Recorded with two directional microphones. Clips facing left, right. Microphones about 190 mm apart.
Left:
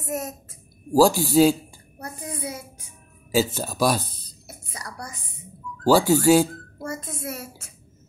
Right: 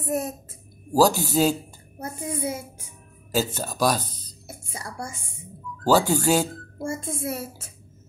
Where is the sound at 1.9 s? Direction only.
25° right (ahead or behind).